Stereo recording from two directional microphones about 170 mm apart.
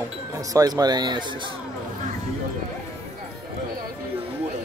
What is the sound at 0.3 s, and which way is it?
Speech, 20° right (ahead or behind).